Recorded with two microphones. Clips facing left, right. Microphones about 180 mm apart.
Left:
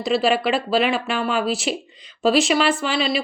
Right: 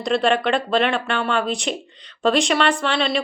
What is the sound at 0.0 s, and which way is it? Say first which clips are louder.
Speech: even; 5° left (ahead or behind).